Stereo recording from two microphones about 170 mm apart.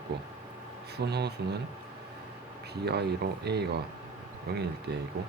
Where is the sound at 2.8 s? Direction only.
75° right (ahead or behind).